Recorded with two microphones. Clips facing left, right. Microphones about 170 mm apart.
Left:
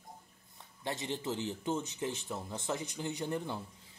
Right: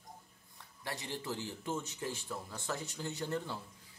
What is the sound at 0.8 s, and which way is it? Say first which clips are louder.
Speech: left 4 dB; 20° left (ahead or behind).